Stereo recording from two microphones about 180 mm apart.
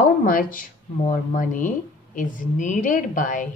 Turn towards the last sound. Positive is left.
turn(degrees=45)  # may be behind; listen again after turning